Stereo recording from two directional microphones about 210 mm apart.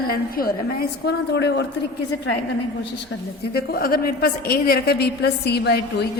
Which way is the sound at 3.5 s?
45° left (ahead or behind).